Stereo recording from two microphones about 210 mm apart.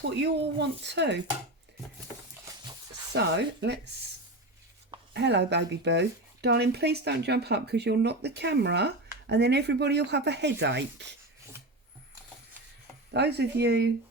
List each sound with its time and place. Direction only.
0.0 s speech: 55° right (ahead or behind)
3.1 s speech: 55° right (ahead or behind)
5.1 s speech: 55° right (ahead or behind)
13.1 s speech: 50° right (ahead or behind)